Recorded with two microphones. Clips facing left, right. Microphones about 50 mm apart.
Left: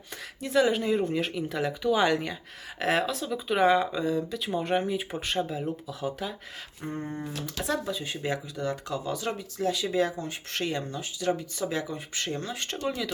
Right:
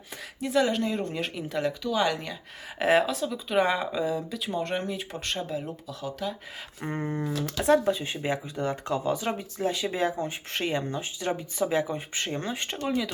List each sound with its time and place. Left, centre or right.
0.3 s speech: centre
1.8 s speech: centre
2.7 s speech: centre
6.8 s speech: right
7.7 s speech: right